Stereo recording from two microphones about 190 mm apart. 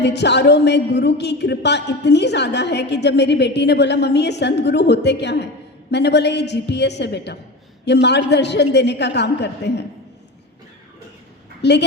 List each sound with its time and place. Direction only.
0.0 s a woman's voice: 65° left (ahead or behind)
11.6 s a woman's voice: 65° left (ahead or behind)